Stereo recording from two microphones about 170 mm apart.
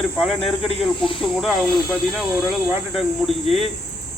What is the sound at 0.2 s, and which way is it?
Speech, centre (ahead or behind).